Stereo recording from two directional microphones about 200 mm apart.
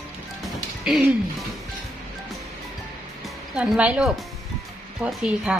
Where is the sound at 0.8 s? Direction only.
5° right (ahead or behind).